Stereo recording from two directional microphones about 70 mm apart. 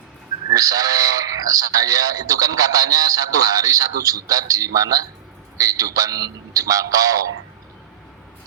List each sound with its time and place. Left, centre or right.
0.5 s a man's voice: right